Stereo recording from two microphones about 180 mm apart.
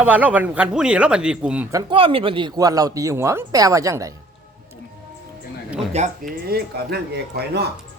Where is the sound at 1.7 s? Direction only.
30° right (ahead or behind).